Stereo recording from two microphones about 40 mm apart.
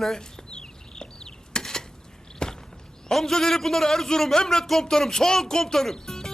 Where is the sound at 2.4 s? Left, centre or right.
Centre.